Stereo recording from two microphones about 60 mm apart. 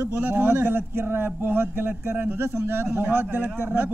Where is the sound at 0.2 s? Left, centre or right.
Right.